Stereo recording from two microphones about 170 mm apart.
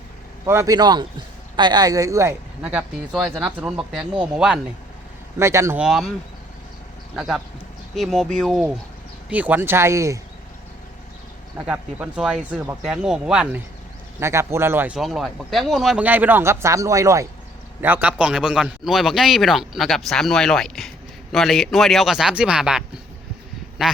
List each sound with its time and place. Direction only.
0.4 s a man's voice: 15° right (ahead or behind)
5.4 s speech: 15° right (ahead or behind)
5.8 s a man's voice: centre (ahead or behind)
7.2 s a man's voice: 5° right (ahead or behind)
11.5 s a man's voice: 5° right (ahead or behind)
14.9 s a man's voice: centre (ahead or behind)